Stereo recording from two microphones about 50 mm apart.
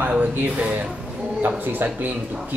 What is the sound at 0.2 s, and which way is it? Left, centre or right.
Speech, right.